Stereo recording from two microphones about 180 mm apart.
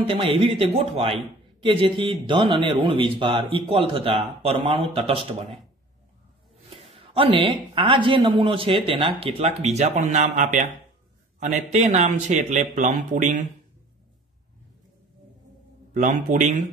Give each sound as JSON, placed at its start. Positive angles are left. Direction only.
{"t": 0.0, "sound": "a man's voice", "side_deg": -30}
{"t": 6.7, "sound": "speech", "side_deg": -35}
{"t": 15.9, "sound": "a man's voice", "side_deg": -45}